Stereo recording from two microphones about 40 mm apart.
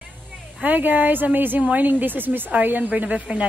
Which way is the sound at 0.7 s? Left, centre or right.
Right.